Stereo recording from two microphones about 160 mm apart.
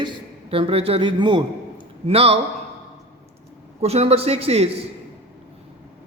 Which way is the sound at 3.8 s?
40° right (ahead or behind).